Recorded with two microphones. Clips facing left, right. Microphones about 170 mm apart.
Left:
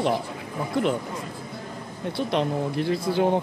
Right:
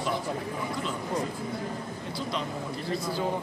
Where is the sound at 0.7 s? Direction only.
65° left (ahead or behind).